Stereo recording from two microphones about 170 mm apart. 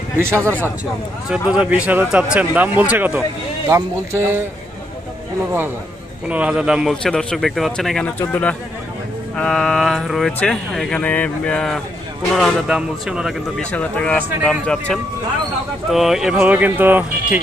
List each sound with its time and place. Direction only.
0.2 s speech: 15° right (ahead or behind)
6.2 s speech: 10° right (ahead or behind)
13.7 s speech: 10° left (ahead or behind); by 17.4 s 10° right (ahead or behind)